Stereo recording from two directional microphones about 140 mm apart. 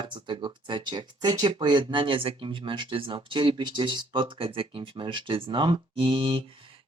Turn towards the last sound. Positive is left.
turn(degrees=-40)  # may be behind; listen again after turning